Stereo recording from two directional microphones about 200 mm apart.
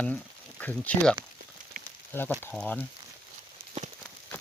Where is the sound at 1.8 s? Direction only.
45° right (ahead or behind).